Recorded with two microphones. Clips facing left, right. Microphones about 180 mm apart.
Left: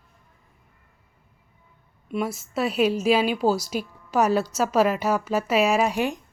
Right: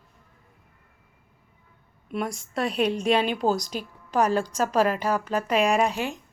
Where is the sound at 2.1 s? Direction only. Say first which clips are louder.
Left 2 dB; 5° left (ahead or behind).